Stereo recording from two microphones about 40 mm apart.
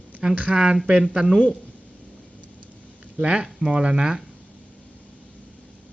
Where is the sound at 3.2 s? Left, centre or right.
Right.